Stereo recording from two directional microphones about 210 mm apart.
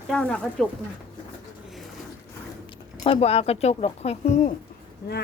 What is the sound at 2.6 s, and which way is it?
Speech, 30° left (ahead or behind).